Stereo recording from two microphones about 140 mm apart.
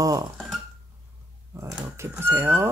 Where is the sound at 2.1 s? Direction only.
20° right (ahead or behind).